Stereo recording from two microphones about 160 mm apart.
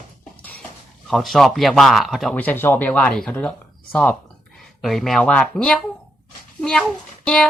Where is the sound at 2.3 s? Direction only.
10° left (ahead or behind).